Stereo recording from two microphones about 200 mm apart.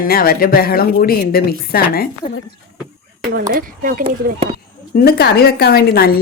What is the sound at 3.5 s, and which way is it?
Speech, 45° right (ahead or behind).